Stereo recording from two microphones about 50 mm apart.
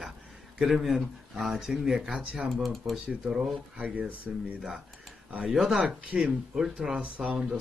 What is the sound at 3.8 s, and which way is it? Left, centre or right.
Speech, right.